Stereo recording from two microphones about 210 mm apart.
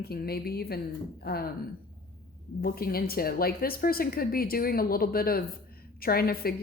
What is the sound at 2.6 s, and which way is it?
Speech, 45° left (ahead or behind).